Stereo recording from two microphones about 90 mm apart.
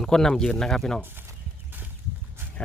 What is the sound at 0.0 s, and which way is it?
Speech, 5° left (ahead or behind).